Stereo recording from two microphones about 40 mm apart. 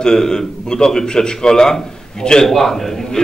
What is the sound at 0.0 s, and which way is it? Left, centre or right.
A man's voice, centre.